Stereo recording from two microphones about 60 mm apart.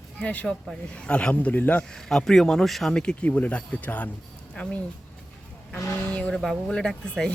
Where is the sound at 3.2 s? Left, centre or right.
Left.